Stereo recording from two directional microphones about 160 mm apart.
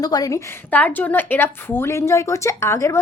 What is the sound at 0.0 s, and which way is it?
A woman's voice, 25° left (ahead or behind).